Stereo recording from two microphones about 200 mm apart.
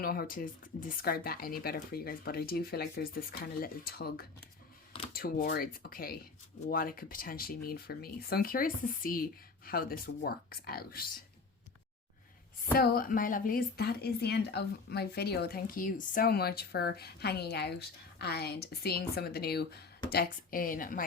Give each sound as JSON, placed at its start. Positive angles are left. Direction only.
{"t": 0.0, "sound": "a woman's voice", "side_deg": 50}
{"t": 12.7, "sound": "a woman's voice", "side_deg": 50}